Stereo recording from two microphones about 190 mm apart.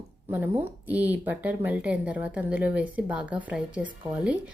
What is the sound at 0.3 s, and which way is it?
A woman's voice, 10° right (ahead or behind).